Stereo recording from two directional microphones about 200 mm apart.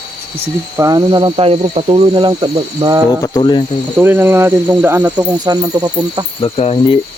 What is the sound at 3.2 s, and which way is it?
Speech, 20° left (ahead or behind).